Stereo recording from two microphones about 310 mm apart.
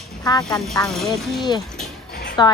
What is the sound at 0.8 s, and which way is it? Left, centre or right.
Speech, centre.